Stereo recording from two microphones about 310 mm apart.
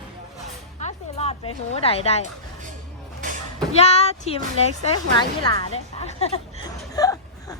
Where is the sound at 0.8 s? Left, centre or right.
Left.